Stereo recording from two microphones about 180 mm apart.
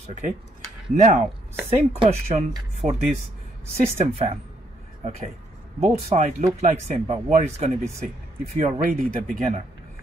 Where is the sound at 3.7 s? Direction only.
35° right (ahead or behind).